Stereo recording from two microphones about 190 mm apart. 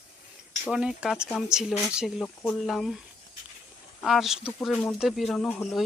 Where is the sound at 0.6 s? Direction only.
5° right (ahead or behind).